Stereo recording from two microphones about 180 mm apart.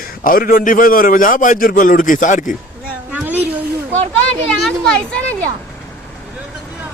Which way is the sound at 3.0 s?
10° right (ahead or behind).